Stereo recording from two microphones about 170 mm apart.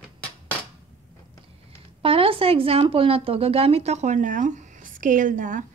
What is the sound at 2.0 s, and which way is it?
A woman's voice, 30° right (ahead or behind).